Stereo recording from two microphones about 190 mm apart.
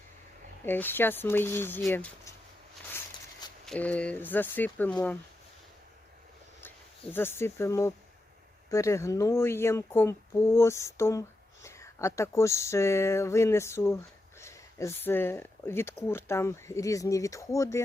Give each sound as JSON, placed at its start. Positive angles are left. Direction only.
{"t": 0.6, "sound": "speech", "side_deg": 10}
{"t": 3.7, "sound": "speech", "side_deg": 5}
{"t": 7.1, "sound": "speech", "side_deg": 10}